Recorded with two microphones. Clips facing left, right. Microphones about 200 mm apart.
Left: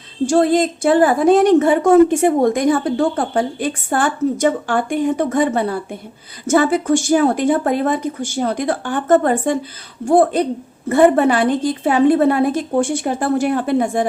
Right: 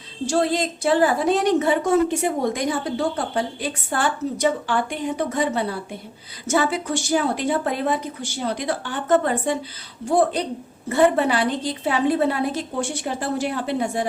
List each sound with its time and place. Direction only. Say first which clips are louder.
0.3 s a woman's voice: left 7 dB; 50° left (ahead or behind)